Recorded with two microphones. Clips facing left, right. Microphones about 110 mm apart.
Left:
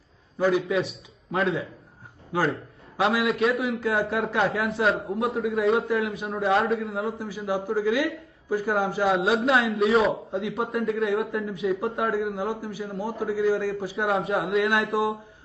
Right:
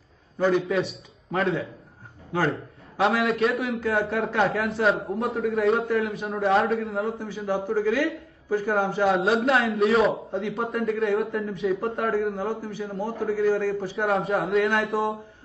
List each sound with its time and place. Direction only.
0.4 s a man's voice: centre (ahead or behind)
7.2 s a man's voice: 10° left (ahead or behind)
13.9 s a man's voice: centre (ahead or behind)